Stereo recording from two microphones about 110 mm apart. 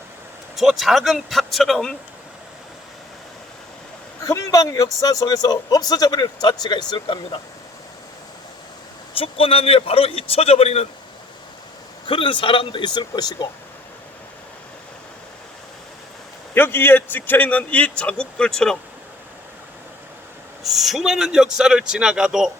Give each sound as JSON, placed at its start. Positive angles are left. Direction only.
{"t": 0.5, "sound": "a man's voice", "side_deg": 0}
{"t": 4.2, "sound": "a man's voice", "side_deg": 30}
{"t": 9.1, "sound": "a man's voice", "side_deg": 60}
{"t": 12.0, "sound": "a man's voice", "side_deg": 50}
{"t": 16.6, "sound": "a man's voice", "side_deg": 20}
{"t": 20.7, "sound": "a man's voice", "side_deg": 0}